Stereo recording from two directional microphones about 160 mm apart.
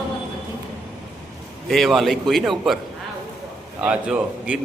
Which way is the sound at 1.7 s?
Centre (ahead or behind).